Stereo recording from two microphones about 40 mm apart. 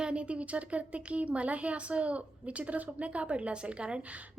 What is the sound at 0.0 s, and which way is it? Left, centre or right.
Speech, right.